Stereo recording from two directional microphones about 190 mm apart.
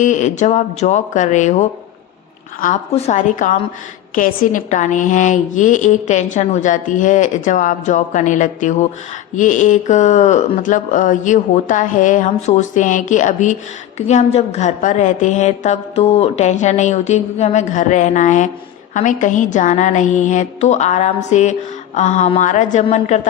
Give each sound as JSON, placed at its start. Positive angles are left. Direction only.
{"t": 0.0, "sound": "a woman's voice", "side_deg": 40}
{"t": 2.9, "sound": "a woman's voice", "side_deg": 40}